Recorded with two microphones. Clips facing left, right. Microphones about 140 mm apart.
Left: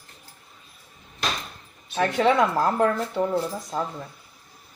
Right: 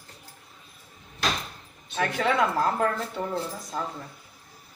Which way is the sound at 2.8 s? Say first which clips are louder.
Left 5 dB; 10° left (ahead or behind).